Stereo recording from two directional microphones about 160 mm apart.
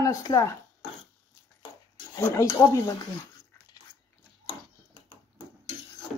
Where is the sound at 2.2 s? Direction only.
15° left (ahead or behind).